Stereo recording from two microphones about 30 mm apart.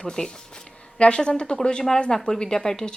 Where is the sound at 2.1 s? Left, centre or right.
Left.